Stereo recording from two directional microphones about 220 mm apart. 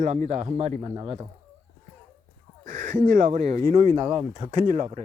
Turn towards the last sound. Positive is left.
turn(degrees=-35)  # may be behind; listen again after turning